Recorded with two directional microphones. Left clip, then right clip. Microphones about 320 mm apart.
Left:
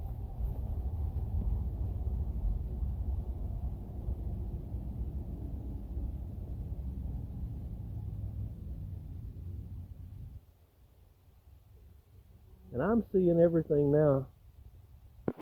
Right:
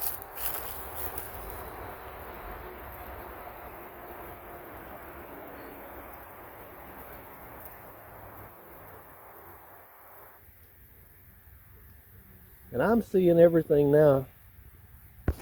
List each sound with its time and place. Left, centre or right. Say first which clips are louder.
12.7 s speech: right 5 dB; centre